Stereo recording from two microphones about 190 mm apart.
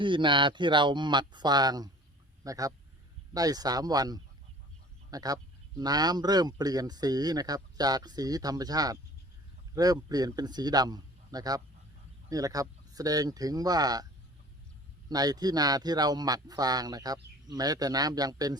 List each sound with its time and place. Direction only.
0.0 s speech: 25° right (ahead or behind)
15.1 s speech: 20° right (ahead or behind)